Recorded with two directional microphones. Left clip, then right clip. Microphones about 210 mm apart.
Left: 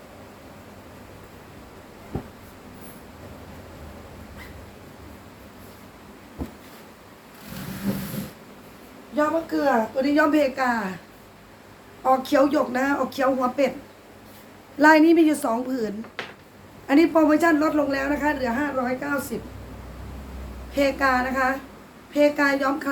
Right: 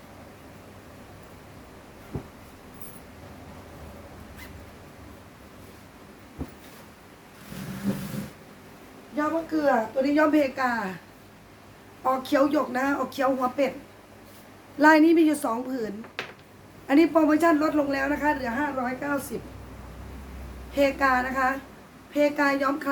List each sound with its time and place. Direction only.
7.9 s a sound: 15° left (ahead or behind)
9.1 s a man's voice: 5° left (ahead or behind)
12.0 s a man's voice: centre (ahead or behind)
14.8 s a man's voice: 5° right (ahead or behind)
20.7 s a man's voice: 5° right (ahead or behind)